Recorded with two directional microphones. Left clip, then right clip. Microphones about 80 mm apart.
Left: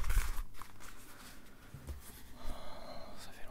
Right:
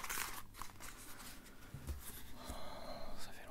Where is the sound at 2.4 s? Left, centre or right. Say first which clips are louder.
Even; centre.